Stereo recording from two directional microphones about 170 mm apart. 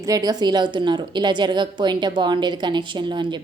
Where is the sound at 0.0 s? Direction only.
20° right (ahead or behind).